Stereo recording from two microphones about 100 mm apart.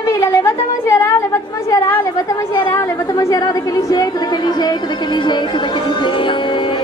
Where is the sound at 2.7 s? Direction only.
35° left (ahead or behind).